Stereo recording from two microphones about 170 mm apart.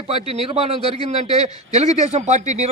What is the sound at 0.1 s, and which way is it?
A man's voice, 35° right (ahead or behind).